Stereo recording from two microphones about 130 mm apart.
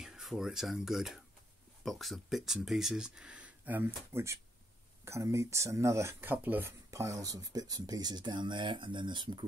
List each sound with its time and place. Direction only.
0.0 s speech: centre (ahead or behind)
6.9 s speech: 25° right (ahead or behind)